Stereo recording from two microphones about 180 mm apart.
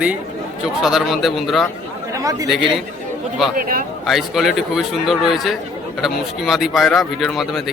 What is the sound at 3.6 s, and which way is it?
Speech, 50° right (ahead or behind).